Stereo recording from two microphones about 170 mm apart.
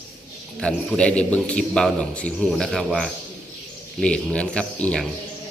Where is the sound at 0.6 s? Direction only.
5° left (ahead or behind).